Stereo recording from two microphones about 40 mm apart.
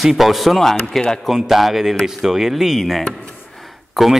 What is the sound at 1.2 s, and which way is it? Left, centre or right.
Speech, centre.